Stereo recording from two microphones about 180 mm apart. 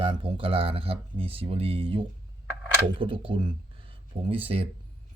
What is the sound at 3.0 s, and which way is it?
Speech, 30° right (ahead or behind).